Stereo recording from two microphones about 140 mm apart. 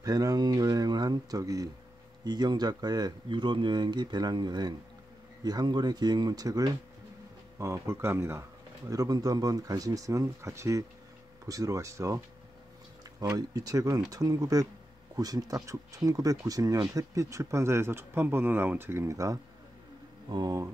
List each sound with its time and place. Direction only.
0.0 s speech: 25° right (ahead or behind)
13.2 s speech: 25° right (ahead or behind)